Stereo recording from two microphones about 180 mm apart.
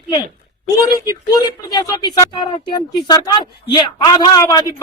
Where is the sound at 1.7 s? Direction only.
20° left (ahead or behind).